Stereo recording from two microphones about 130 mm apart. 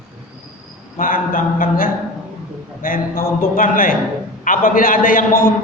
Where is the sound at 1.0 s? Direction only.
90° left.